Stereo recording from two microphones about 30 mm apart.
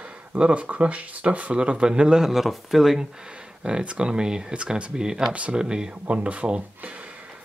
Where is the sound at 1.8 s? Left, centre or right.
Right.